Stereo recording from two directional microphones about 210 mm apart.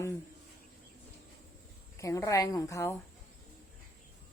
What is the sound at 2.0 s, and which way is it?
Speech, 15° left (ahead or behind).